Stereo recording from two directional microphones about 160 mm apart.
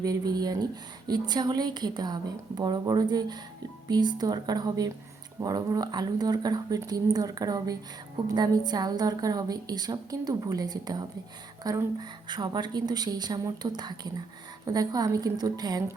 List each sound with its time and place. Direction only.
0.0 s a woman's voice: 25° right (ahead or behind)